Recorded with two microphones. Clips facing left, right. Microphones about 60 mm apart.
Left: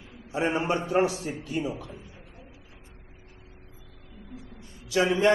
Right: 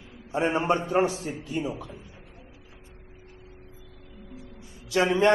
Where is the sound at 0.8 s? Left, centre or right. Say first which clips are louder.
Even; centre.